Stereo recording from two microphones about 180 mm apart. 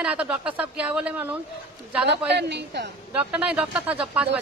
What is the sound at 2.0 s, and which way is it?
Speech, 70° right (ahead or behind).